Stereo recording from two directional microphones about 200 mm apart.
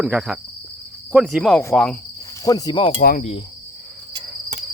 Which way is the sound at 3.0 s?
45° left (ahead or behind).